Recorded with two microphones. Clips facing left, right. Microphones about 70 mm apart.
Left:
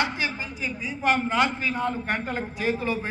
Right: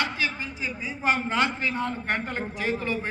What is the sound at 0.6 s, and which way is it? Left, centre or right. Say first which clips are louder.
A man's voice: left 2 dB; centre.